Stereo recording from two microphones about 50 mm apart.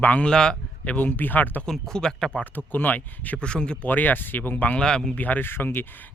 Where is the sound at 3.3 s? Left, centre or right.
Centre.